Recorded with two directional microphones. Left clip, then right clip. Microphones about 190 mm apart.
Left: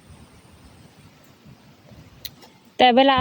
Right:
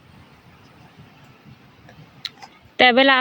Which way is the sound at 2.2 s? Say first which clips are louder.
Right 6 dB; 10° left (ahead or behind).